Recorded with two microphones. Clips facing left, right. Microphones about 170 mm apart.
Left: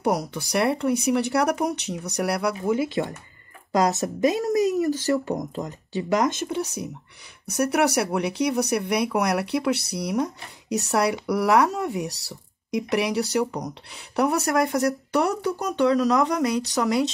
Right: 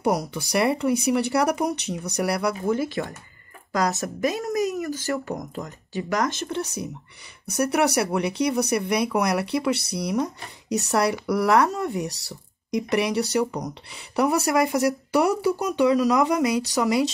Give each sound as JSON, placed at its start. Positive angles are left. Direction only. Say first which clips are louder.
{"t": 0.0, "sound": "speech", "louder": "even", "side_deg": 0}
{"t": 2.7, "sound": "speech", "louder": "left 1 dB", "side_deg": 20}
{"t": 4.7, "sound": "a sound", "louder": "left 5 dB", "side_deg": 35}
{"t": 5.1, "sound": "speech", "louder": "left 4 dB", "side_deg": 25}
{"t": 6.5, "sound": "speech", "louder": "left 1 dB", "side_deg": 0}